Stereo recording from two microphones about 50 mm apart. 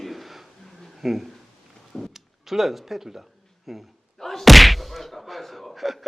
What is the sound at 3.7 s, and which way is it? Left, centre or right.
Slam, centre.